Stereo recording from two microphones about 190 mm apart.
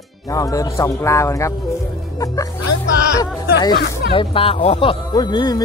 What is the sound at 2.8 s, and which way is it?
Speech, 65° left (ahead or behind).